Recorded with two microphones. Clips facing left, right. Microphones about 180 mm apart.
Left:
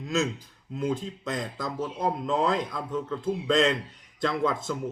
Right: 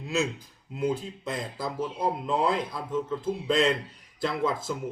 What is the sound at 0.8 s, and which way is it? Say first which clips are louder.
Speech: right 1 dB; 5° right (ahead or behind).